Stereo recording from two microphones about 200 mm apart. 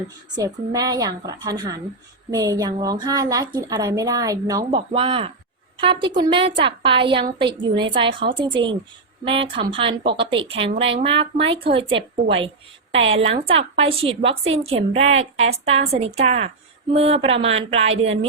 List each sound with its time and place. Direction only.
0.3 s a woman's voice: 20° right (ahead or behind)
4.7 s a woman's voice: 30° right (ahead or behind)
12.9 s a woman's voice: 70° right (ahead or behind)
13.1 s a woman's voice: 30° right (ahead or behind)